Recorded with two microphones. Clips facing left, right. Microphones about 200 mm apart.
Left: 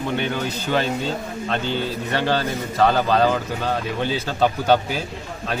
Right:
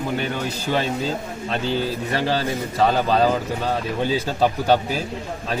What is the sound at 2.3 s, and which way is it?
Speech, 5° right (ahead or behind).